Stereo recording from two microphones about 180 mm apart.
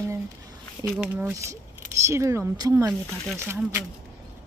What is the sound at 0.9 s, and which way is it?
Speech, centre (ahead or behind).